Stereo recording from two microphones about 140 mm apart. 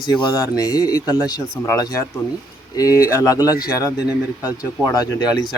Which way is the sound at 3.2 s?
25° left (ahead or behind).